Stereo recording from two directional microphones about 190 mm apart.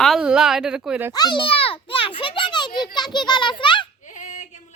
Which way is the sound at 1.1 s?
25° left (ahead or behind).